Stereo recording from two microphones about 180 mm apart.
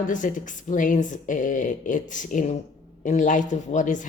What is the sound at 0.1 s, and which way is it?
Speech, 45° left (ahead or behind).